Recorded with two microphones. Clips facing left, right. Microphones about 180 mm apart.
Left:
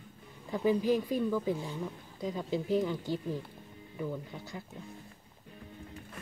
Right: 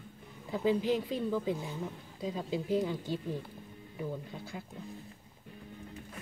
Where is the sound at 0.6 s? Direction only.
20° right (ahead or behind).